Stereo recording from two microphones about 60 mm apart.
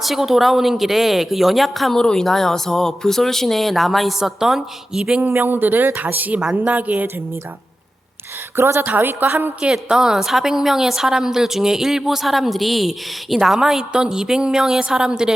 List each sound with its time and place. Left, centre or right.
0.0 s speech: centre
2.0 s a woman's voice: centre
5.2 s speech: right
8.5 s a woman's voice: right
8.8 s speech: right
9.7 s a woman's voice: centre